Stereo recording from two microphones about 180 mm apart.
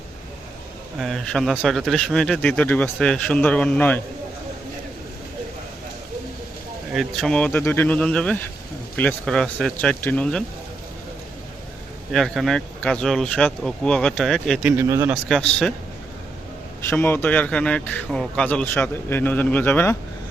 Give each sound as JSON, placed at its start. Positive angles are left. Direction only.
{"t": 0.9, "sound": "speech", "side_deg": 0}
{"t": 6.9, "sound": "speech", "side_deg": 0}
{"t": 12.1, "sound": "speech", "side_deg": 0}
{"t": 14.6, "sound": "speech", "side_deg": -15}
{"t": 15.1, "sound": "speech", "side_deg": 5}
{"t": 16.8, "sound": "a man's voice", "side_deg": 10}